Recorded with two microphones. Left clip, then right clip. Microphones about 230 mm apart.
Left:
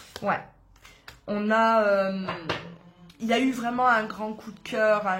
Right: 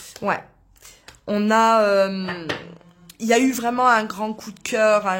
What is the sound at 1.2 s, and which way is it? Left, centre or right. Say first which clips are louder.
Speech: right 5 dB; right.